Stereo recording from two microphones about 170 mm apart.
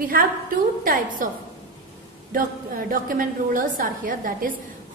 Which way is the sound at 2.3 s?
55° right (ahead or behind).